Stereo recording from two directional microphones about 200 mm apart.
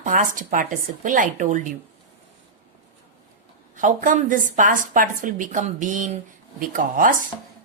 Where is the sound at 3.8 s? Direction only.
40° right (ahead or behind).